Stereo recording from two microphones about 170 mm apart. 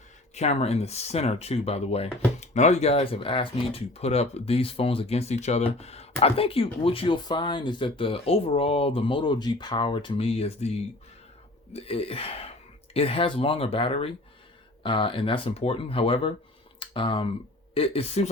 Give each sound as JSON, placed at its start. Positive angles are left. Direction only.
{"t": 0.3, "sound": "speech", "side_deg": 40}